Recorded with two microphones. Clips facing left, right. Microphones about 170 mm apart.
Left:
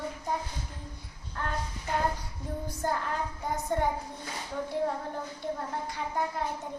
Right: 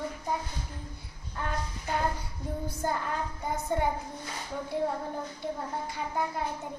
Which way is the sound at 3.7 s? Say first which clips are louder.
Even; centre (ahead or behind).